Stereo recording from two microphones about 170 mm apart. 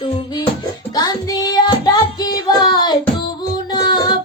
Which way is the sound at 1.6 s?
25° left (ahead or behind).